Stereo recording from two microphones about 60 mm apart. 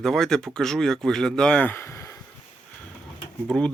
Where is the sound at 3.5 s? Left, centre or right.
Centre.